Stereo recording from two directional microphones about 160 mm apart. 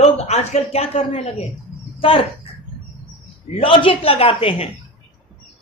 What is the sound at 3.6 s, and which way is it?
A woman's voice, 35° left (ahead or behind).